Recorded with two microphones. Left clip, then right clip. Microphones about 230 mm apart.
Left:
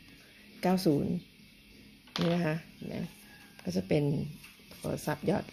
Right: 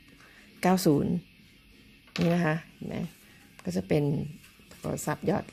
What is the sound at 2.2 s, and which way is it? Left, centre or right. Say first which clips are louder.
Speech: right 5 dB; right.